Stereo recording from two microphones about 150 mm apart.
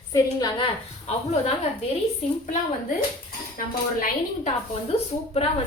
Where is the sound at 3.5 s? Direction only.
70° left (ahead or behind).